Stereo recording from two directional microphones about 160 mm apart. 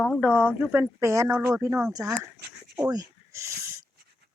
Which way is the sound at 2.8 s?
20° right (ahead or behind).